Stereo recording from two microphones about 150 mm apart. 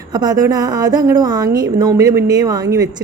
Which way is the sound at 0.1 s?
25° right (ahead or behind).